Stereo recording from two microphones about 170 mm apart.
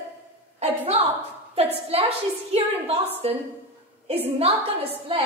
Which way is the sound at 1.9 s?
35° right (ahead or behind).